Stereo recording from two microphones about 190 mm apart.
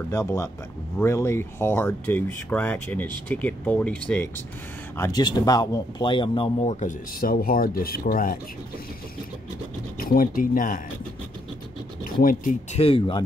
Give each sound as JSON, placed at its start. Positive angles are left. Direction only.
{"t": 0.1, "sound": "speech", "side_deg": 15}
{"t": 4.9, "sound": "speech", "side_deg": 15}
{"t": 9.9, "sound": "speech", "side_deg": 50}
{"t": 12.0, "sound": "speech", "side_deg": 45}
{"t": 12.7, "sound": "speech", "side_deg": 30}